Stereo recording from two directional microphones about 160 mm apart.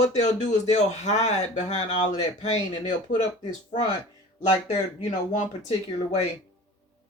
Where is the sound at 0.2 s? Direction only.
45° left (ahead or behind).